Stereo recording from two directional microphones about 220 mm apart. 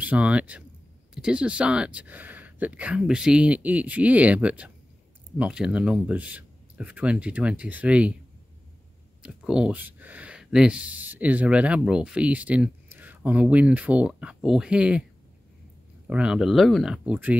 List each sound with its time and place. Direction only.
0.0 s speech: 5° right (ahead or behind)
9.2 s speech: 5° right (ahead or behind)
16.1 s speech: 5° right (ahead or behind)